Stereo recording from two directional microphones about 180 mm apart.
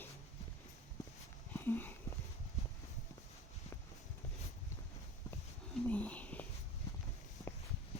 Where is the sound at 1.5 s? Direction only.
10° left (ahead or behind).